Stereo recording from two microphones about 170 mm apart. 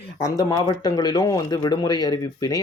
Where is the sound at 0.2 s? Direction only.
20° left (ahead or behind).